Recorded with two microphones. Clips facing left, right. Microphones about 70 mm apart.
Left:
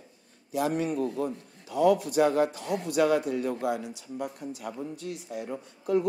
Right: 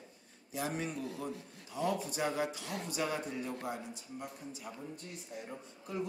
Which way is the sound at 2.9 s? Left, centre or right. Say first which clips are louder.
Left 13 dB; left.